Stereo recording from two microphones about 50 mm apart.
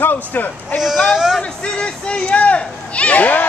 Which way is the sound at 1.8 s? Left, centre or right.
Left.